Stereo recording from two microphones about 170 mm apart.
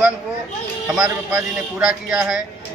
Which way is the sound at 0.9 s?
5° right (ahead or behind).